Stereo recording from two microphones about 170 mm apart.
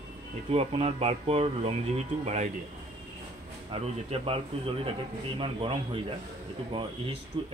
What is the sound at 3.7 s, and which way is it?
A man's voice, 35° right (ahead or behind).